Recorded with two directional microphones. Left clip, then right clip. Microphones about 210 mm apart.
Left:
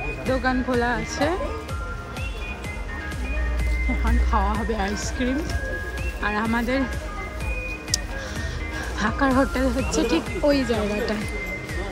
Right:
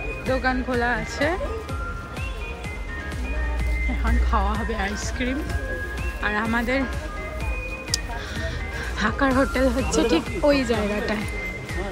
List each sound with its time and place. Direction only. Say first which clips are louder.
0.3 s speech: even; 15° left (ahead or behind)
4.0 s speech: even; 15° left (ahead or behind)
8.9 s speech: even; 15° left (ahead or behind)